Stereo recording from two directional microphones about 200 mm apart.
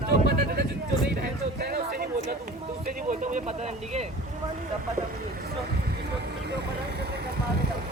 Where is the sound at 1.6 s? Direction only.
50° right (ahead or behind).